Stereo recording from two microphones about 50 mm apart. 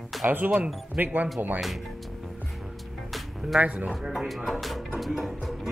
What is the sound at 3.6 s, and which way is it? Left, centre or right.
Speech, right.